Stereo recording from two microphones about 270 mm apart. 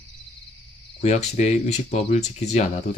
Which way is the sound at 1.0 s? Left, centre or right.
Left.